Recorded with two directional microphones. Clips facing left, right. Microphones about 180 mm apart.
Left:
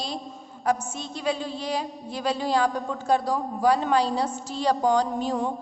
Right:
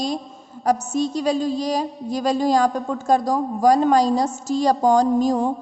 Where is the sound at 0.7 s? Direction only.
40° right (ahead or behind).